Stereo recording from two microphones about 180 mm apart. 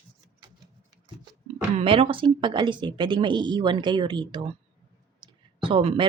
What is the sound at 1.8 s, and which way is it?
A woman's voice, 30° right (ahead or behind).